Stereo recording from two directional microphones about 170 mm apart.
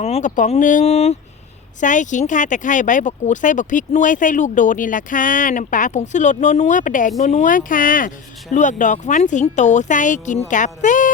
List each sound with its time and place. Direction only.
0.0 s speech: 45° left (ahead or behind)